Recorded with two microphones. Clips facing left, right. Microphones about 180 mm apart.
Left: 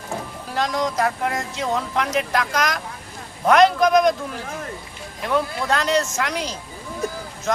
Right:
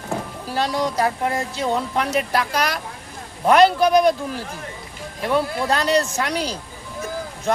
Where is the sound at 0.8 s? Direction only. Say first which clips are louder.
Right 1 dB; 30° right (ahead or behind).